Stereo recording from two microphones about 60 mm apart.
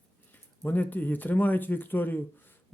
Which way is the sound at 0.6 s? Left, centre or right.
Left.